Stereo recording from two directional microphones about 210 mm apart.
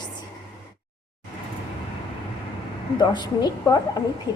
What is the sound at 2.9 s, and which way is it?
Speech, 20° left (ahead or behind).